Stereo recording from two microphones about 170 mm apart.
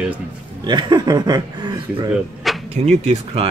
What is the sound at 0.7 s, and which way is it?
Speech, 25° right (ahead or behind).